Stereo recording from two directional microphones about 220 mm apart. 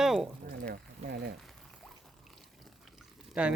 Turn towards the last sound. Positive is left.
turn(degrees=-5)  # may be behind; listen again after turning